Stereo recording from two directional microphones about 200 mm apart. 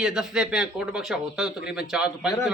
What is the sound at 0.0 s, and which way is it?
Speech, 5° right (ahead or behind).